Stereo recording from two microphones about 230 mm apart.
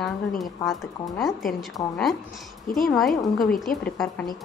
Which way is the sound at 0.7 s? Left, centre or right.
Centre.